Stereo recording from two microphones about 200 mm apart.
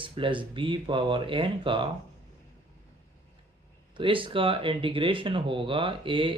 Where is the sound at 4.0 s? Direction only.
25° right (ahead or behind).